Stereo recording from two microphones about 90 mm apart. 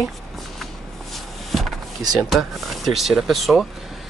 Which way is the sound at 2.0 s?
45° right (ahead or behind).